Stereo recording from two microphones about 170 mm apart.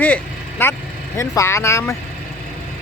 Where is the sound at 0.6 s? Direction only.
15° left (ahead or behind).